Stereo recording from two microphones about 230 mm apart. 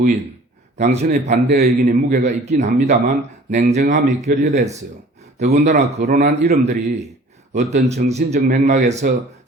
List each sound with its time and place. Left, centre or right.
0.8 s speech: right